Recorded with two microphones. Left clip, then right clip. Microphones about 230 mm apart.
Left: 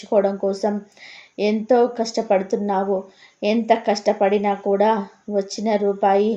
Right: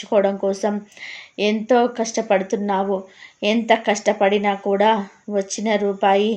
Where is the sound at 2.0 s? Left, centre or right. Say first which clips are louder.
Even; centre.